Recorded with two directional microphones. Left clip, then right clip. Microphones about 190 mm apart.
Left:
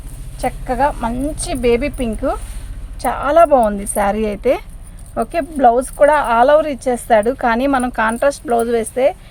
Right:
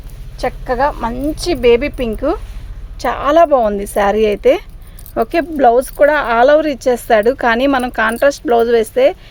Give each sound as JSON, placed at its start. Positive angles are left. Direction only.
{"t": 0.3, "sound": "a woman's voice", "side_deg": -55}